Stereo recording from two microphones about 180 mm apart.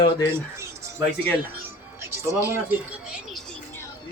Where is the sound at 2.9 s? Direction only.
Centre (ahead or behind).